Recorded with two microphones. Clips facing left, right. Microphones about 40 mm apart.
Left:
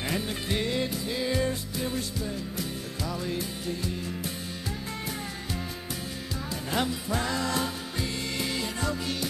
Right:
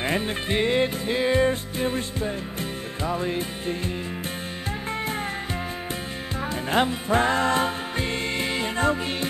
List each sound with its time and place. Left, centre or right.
0.0 s music: right
6.7 s music: right